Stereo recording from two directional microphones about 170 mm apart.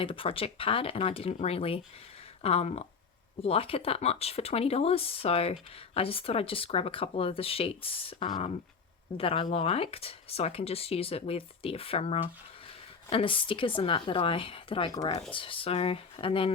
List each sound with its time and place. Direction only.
0.0 s speech: 30° left (ahead or behind)